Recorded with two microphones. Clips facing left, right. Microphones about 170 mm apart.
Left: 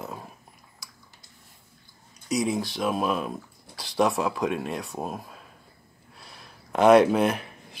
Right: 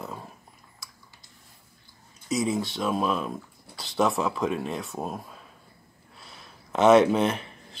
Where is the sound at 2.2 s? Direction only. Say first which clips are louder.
Even; centre (ahead or behind).